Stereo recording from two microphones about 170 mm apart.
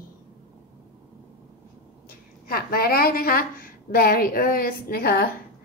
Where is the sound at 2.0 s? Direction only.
60° left (ahead or behind).